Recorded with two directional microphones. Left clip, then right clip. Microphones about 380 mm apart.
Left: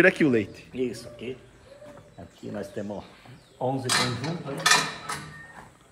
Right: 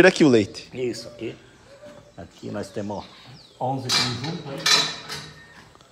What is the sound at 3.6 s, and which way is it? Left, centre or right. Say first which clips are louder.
Speech: right 2 dB; centre.